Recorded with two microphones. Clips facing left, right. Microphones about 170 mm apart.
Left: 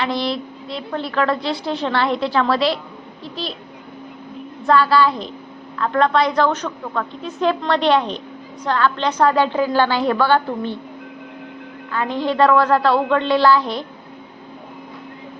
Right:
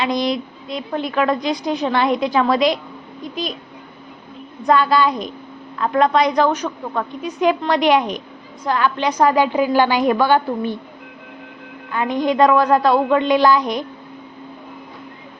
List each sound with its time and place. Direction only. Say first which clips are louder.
0.0 s a woman's voice: right 2 dB; 15° right (ahead or behind)
4.6 s a woman's voice: even; 20° right (ahead or behind)
11.9 s a woman's voice: right 2 dB; 15° right (ahead or behind)